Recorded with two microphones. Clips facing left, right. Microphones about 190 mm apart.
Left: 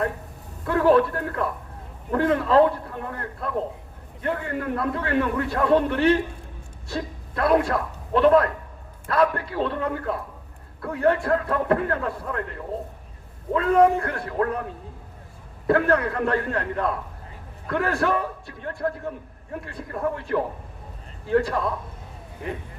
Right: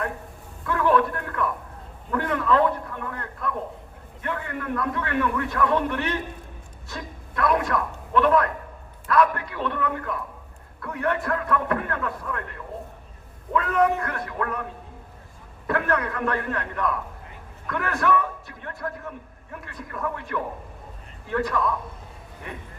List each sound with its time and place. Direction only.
0.6 s a man's voice: 35° left (ahead or behind)
15.6 s a man's voice: 30° left (ahead or behind)